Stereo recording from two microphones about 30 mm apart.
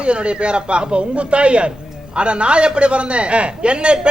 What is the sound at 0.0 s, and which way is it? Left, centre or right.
Speech, right.